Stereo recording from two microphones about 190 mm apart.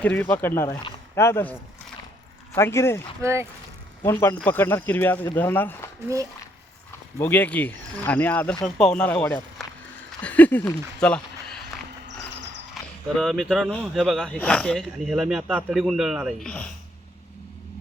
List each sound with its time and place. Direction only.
0.0 s speech: 10° left (ahead or behind)
1.2 s speech: 10° left (ahead or behind)
3.2 s speech: 15° right (ahead or behind)
4.0 s speech: 15° left (ahead or behind)
7.2 s speech: 10° left (ahead or behind)
13.1 s speech: centre (ahead or behind)